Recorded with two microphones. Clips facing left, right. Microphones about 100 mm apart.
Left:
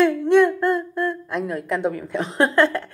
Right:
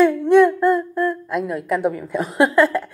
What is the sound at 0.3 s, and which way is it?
A woman's voice, 15° right (ahead or behind).